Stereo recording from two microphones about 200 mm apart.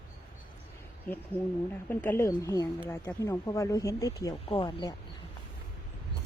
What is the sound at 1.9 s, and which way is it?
Speech, 10° left (ahead or behind).